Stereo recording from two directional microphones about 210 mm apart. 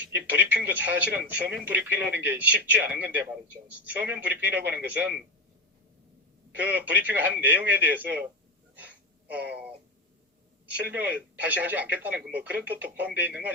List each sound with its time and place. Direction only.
0.0 s speech: 10° right (ahead or behind)
6.5 s speech: 10° right (ahead or behind)
9.3 s speech: 5° right (ahead or behind)
10.8 s speech: 10° right (ahead or behind)